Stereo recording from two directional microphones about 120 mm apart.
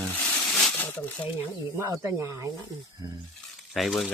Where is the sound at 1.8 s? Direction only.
25° right (ahead or behind).